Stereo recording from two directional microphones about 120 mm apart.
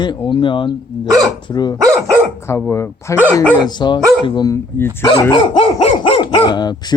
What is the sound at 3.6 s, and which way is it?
Speech, 40° left (ahead or behind).